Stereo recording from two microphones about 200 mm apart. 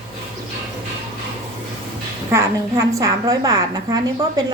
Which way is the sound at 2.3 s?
15° right (ahead or behind).